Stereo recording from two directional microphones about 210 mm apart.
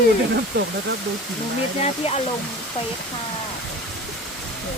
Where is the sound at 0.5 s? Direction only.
55° right (ahead or behind).